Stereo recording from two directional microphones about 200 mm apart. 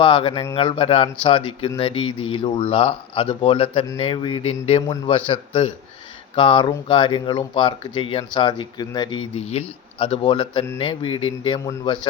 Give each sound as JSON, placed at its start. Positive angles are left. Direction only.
{"t": 0.0, "sound": "speech", "side_deg": 25}